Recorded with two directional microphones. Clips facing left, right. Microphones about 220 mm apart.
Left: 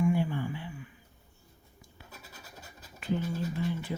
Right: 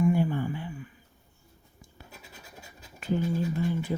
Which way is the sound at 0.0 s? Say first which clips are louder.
Right 3 dB; 45° right (ahead or behind).